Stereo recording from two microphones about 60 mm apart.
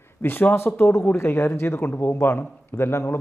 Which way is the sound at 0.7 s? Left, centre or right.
Left.